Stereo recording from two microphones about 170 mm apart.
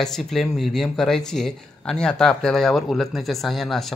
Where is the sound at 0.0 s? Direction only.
Centre (ahead or behind).